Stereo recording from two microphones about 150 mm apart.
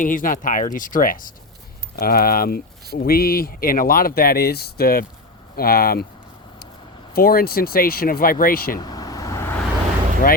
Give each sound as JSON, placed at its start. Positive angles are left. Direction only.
{"t": 0.0, "sound": "speech", "side_deg": 65}
{"t": 2.0, "sound": "speech", "side_deg": 85}
{"t": 7.1, "sound": "speech", "side_deg": 85}
{"t": 8.8, "sound": "vehicle", "side_deg": 25}